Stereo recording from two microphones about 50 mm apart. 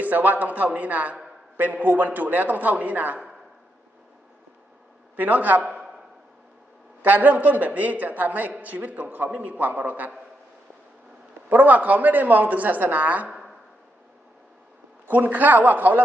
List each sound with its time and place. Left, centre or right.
0.0 s a man's voice: right
5.1 s a man's voice: right
7.0 s a man's voice: right
11.4 s a man's voice: right
13.2 s a sound: centre
15.0 s a man's voice: right